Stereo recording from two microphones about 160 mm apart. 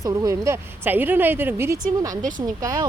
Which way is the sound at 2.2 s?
55° right (ahead or behind).